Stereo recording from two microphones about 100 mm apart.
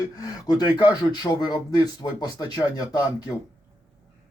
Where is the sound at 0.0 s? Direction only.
40° left (ahead or behind).